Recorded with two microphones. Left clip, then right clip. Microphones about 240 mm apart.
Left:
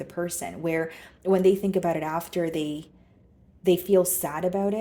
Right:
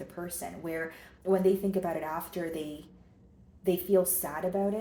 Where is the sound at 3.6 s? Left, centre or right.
Left.